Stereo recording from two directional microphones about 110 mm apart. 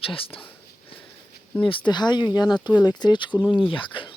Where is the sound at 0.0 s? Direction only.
55° left (ahead or behind).